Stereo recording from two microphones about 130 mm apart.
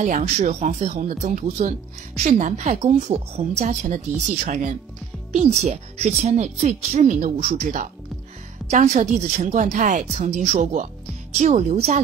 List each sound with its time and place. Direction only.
0.0 s a woman's voice: 65° right (ahead or behind)
5.3 s speech: 55° right (ahead or behind)
7.3 s a woman's voice: 55° right (ahead or behind)
11.7 s speech: 55° right (ahead or behind)